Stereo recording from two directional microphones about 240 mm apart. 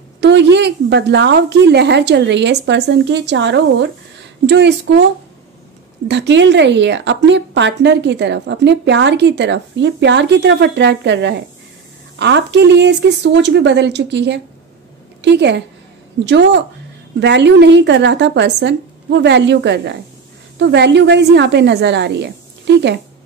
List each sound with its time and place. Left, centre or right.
0.2 s a woman's voice: right
6.0 s a woman's voice: right